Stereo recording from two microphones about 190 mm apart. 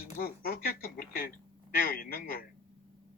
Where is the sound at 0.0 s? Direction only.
50° left (ahead or behind).